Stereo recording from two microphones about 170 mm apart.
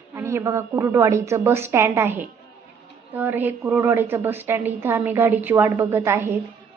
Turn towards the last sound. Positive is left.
turn(degrees=-15)  # may be behind; listen again after turning